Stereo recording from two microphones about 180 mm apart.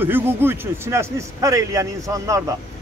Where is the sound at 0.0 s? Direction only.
10° right (ahead or behind).